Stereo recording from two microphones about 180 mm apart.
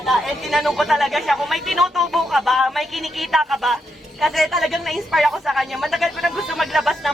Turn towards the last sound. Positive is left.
turn(degrees=0)  # may be behind; listen again after turning